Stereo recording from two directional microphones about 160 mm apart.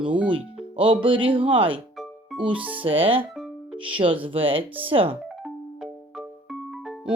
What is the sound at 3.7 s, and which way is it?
Speech, 30° right (ahead or behind).